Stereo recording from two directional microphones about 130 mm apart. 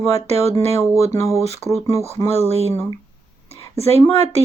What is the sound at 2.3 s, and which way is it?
Speech, 55° right (ahead or behind).